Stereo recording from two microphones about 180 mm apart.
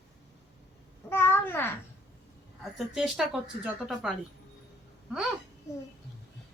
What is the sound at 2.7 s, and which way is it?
Speech, centre (ahead or behind).